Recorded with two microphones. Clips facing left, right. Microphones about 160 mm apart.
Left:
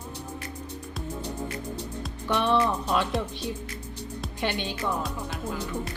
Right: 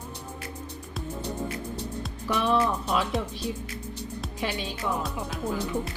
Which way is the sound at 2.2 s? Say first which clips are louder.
Left 1 dB; 5° right (ahead or behind).